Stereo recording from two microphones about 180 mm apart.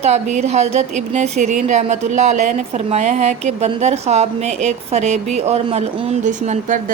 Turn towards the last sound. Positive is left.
turn(degrees=-45)  # may be behind; listen again after turning